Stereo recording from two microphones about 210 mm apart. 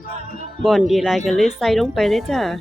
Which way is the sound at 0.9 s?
Centre (ahead or behind).